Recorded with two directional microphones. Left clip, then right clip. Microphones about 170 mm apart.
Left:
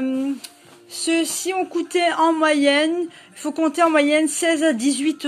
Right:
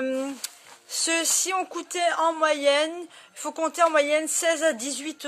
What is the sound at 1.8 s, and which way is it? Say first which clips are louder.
Speech: left 6 dB; 30° right (ahead or behind).